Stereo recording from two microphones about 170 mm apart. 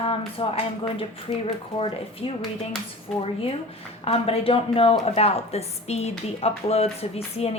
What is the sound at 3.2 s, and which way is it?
Speech, 35° left (ahead or behind).